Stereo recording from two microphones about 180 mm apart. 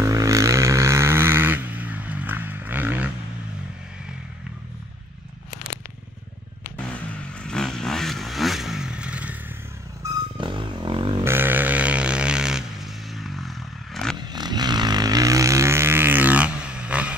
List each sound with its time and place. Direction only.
0.0 s vehicle: 15° right (ahead or behind)
6.9 s vehicle: 5° left (ahead or behind)
10.3 s a sound: 25° right (ahead or behind)
11.2 s vehicle: 10° right (ahead or behind)
14.1 s vehicle: 25° right (ahead or behind); by 17.1 s 5° right (ahead or behind)